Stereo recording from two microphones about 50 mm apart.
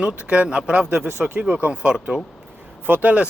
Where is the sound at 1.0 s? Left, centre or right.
Right.